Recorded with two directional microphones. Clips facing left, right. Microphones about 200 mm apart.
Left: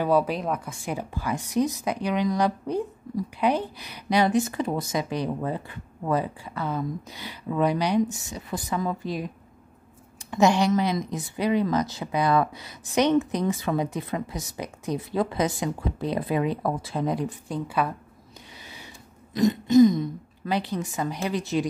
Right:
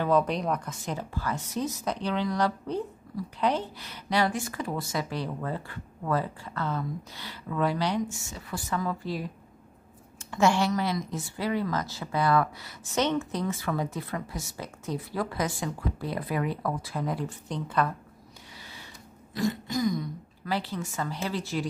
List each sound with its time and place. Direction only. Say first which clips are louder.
0.0 s a woman's voice: left 2 dB; 10° left (ahead or behind)
10.3 s speech: left 4 dB; 20° left (ahead or behind)
19.3 s speech: left 11 dB; 20° left (ahead or behind)